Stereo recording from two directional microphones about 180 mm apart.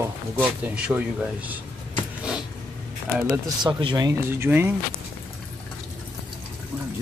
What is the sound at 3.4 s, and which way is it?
Speech, 25° right (ahead or behind).